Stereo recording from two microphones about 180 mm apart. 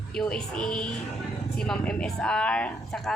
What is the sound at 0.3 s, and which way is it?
Speech, 5° left (ahead or behind).